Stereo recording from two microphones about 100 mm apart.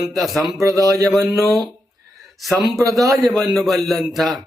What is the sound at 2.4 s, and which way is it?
A man's voice, centre (ahead or behind).